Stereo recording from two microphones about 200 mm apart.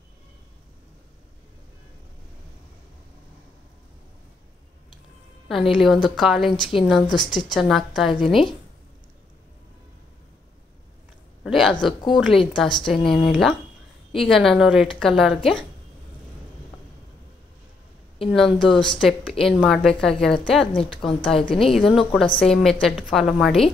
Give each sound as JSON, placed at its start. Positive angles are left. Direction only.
{"t": 5.5, "sound": "a woman's voice", "side_deg": 0}
{"t": 6.5, "sound": "a woman's voice", "side_deg": 25}
{"t": 6.9, "sound": "a woman's voice", "side_deg": 0}
{"t": 7.2, "sound": "a woman's voice", "side_deg": 20}
{"t": 7.6, "sound": "a woman's voice", "side_deg": 0}
{"t": 11.4, "sound": "a woman's voice", "side_deg": 0}
{"t": 18.3, "sound": "a woman's voice", "side_deg": 0}